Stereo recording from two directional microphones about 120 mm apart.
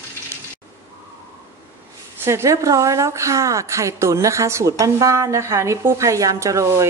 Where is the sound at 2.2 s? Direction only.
25° right (ahead or behind).